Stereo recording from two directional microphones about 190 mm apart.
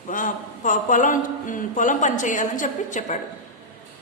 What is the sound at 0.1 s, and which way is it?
A woman's voice, 45° left (ahead or behind).